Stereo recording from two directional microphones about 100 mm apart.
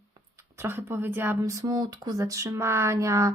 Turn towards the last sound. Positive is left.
turn(degrees=-30)  # may be behind; listen again after turning